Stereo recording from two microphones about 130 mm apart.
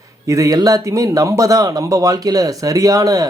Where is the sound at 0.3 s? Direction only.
25° right (ahead or behind).